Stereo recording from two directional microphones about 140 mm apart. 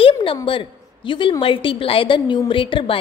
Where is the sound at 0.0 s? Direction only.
40° left (ahead or behind).